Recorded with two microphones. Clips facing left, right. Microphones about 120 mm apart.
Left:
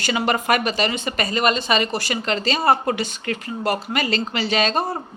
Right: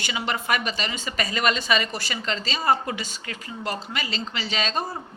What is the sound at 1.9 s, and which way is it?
A woman's voice, 65° left (ahead or behind).